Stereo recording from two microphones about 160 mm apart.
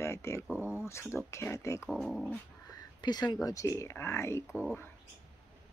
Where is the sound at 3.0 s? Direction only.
25° left (ahead or behind); by 4.9 s 10° left (ahead or behind).